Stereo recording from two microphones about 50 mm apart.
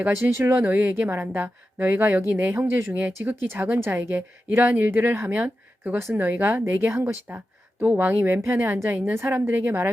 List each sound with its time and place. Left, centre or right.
0.1 s speech: right
0.7 s speech: right
5.3 s speech: right
7.3 s speech: right
8.4 s speech: right